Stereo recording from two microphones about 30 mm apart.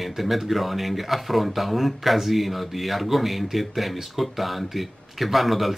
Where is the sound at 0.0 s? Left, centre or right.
Centre.